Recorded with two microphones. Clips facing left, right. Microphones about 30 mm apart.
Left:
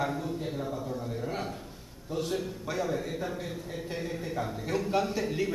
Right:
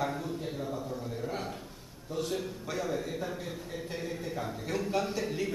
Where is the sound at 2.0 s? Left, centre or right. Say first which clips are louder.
Left 2 dB; centre.